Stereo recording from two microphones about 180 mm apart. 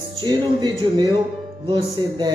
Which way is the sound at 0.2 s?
25° right (ahead or behind).